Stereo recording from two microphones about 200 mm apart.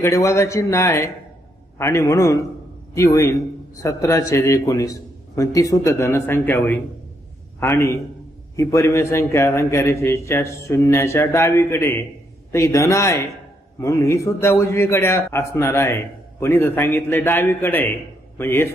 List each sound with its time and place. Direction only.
0.0 s a man's voice: 15° left (ahead or behind)